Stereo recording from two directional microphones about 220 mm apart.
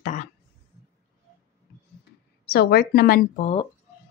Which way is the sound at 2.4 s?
45° left (ahead or behind).